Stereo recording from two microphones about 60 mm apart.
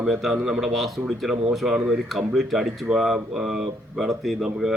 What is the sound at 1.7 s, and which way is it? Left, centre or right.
Speech, right.